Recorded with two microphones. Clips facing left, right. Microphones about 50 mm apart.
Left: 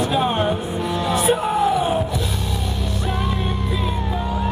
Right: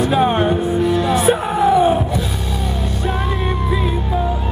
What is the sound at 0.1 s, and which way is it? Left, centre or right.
Music, centre.